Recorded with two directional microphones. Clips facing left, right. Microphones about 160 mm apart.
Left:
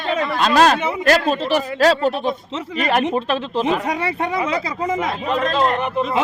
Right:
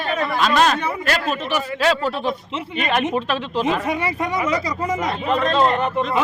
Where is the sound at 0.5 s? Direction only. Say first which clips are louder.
Left 6 dB; 40° left (ahead or behind).